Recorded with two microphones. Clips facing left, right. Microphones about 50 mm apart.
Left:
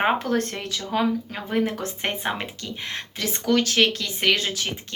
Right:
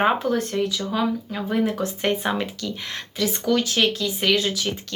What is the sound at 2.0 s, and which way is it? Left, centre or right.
Speech, left.